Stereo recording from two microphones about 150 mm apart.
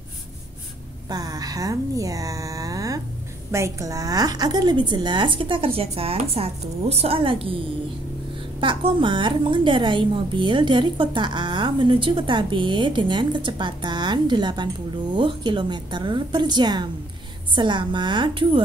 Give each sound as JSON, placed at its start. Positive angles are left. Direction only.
{"t": 1.1, "sound": "a woman's voice", "side_deg": -25}